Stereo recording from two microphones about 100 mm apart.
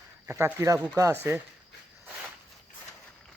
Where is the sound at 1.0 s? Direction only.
30° right (ahead or behind).